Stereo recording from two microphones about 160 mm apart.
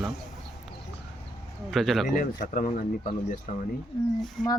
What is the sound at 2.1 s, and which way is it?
Speech, 60° left (ahead or behind).